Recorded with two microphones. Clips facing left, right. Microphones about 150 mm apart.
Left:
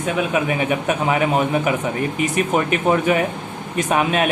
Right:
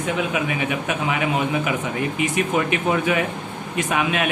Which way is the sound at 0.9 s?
40° left (ahead or behind).